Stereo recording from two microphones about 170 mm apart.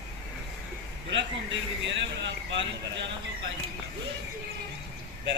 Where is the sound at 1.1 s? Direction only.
90° right.